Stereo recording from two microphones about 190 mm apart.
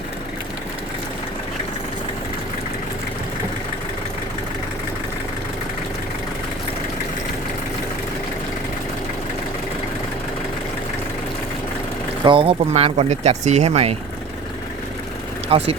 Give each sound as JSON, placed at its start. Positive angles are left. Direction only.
{"t": 12.2, "sound": "speech", "side_deg": -25}
{"t": 15.4, "sound": "speech", "side_deg": -30}